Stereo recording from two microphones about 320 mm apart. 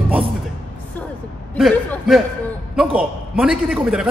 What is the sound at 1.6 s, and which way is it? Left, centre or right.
A man's voice, centre.